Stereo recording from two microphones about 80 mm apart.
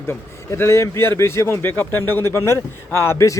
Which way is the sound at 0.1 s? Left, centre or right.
Left.